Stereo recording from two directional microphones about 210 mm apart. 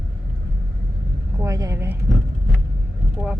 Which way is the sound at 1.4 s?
15° right (ahead or behind).